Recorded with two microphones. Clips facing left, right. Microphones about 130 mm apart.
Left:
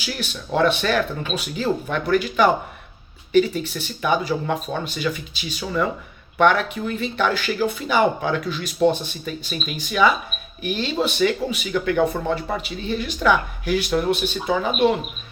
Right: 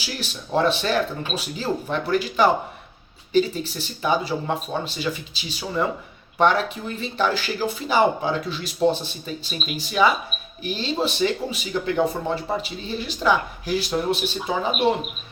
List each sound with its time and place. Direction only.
0.0 s speech: 35° right (ahead or behind)